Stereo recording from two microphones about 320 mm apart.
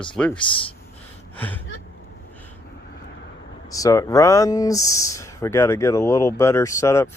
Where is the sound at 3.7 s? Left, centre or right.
Centre.